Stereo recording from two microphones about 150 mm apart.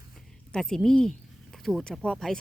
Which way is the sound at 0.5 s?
5° left (ahead or behind).